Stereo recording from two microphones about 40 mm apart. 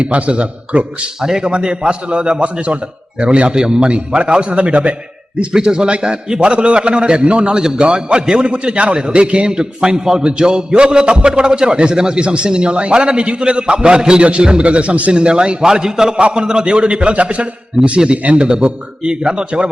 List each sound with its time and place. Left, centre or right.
0.0 s a man's voice: right
1.2 s a man's voice: centre; by 4.9 s right
5.4 s a man's voice: right
15.1 s a man's voice: right